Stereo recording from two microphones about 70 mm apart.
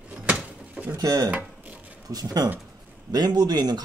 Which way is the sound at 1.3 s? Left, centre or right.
Right.